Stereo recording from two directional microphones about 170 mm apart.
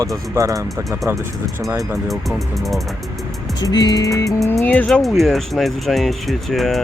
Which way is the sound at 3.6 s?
25° left (ahead or behind).